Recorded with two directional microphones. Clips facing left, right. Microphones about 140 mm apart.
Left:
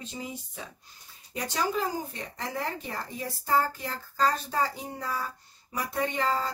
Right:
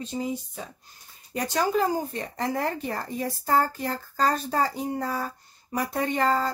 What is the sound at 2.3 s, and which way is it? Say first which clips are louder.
Speech: right 6 dB; 50° right (ahead or behind).